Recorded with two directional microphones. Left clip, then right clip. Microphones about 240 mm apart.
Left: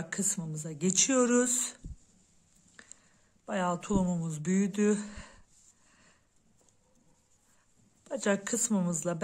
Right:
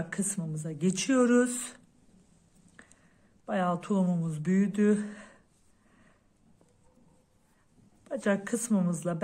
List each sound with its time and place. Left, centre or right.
0.1 s speech: centre
2.7 s a sound: left
3.4 s speech: centre
8.0 s speech: left